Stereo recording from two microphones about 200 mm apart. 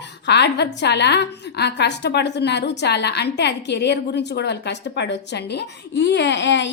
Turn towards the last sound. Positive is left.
turn(degrees=60)  # may be behind; listen again after turning